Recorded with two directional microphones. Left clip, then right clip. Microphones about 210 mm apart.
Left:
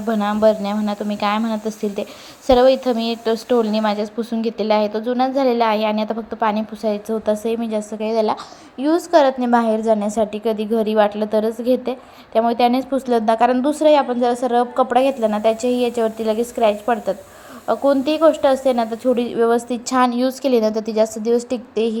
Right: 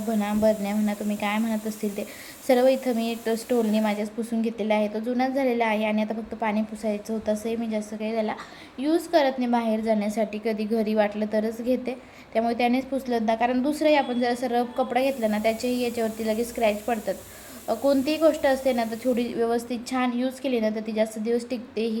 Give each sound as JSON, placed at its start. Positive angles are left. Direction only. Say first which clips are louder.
{"t": 0.1, "sound": "a woman's voice", "louder": "left 7 dB", "side_deg": 15}